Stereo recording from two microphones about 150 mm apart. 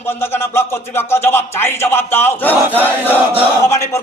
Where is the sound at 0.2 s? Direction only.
15° left (ahead or behind).